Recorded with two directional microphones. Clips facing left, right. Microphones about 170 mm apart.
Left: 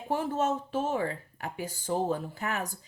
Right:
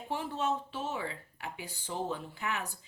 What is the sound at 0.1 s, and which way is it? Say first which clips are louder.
A woman's voice: left 5 dB; 45° left (ahead or behind).